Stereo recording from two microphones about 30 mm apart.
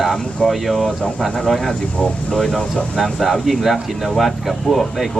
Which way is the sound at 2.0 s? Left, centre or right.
Left.